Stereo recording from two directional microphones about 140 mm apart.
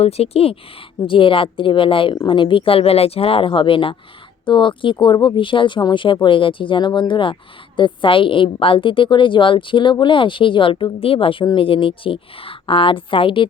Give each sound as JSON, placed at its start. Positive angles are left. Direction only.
{"t": 0.0, "sound": "a woman's voice", "side_deg": 45}